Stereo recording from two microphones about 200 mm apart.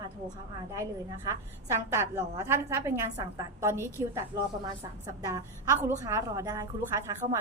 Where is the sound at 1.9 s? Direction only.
15° right (ahead or behind).